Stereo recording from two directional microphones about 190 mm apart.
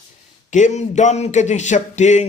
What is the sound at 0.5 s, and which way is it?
Speech, 40° left (ahead or behind).